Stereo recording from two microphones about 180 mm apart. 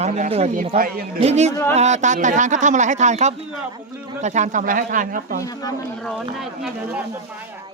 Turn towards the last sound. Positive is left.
turn(degrees=0)  # may be behind; listen again after turning